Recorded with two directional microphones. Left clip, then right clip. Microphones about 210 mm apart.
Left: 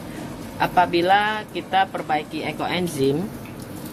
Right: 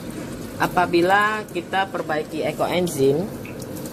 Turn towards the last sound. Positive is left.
turn(degrees=25)  # may be behind; listen again after turning